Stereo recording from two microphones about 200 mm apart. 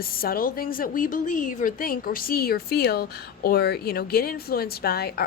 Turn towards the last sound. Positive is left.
turn(degrees=50)  # may be behind; listen again after turning